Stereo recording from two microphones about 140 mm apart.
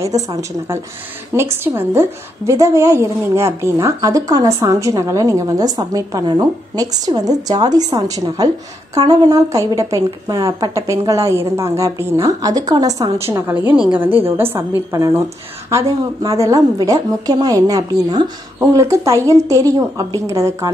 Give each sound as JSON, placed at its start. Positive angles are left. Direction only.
{"t": 0.0, "sound": "a woman's voice", "side_deg": -25}